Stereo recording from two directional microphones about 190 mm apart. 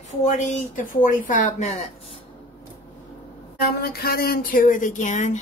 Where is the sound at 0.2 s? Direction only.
40° left (ahead or behind).